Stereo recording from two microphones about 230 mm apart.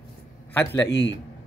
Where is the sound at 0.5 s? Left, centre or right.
Centre.